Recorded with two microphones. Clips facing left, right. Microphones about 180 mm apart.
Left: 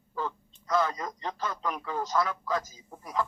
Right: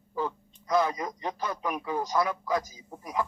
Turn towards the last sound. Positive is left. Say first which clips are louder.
# even
turn(degrees=-15)  # may be behind; listen again after turning